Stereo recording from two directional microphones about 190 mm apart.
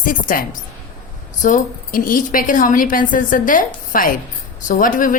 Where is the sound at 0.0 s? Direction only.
45° left (ahead or behind).